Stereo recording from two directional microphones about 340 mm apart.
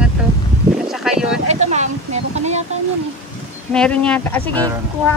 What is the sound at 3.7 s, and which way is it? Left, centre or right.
Speech, centre.